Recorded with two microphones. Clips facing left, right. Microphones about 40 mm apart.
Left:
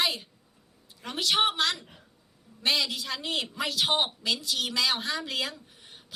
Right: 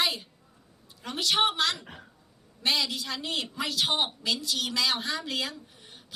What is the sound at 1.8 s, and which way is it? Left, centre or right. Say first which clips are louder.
Speech: right 6 dB; right.